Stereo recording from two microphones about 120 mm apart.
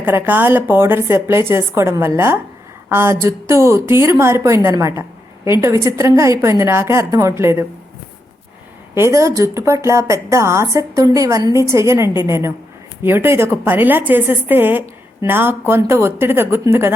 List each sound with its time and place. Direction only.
0.0 s a woman's voice: 15° right (ahead or behind)
9.0 s a woman's voice: 25° right (ahead or behind)